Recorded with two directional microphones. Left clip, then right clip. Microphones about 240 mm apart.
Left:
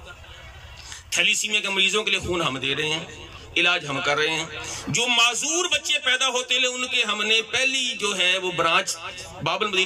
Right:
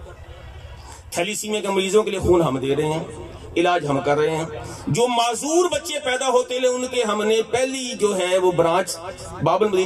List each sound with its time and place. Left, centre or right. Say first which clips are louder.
1.1 s a man's voice: left 3 dB; right